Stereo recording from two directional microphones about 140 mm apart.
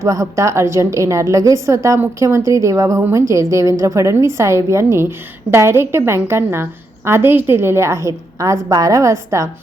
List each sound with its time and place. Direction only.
0.0 s a woman's voice: 25° right (ahead or behind)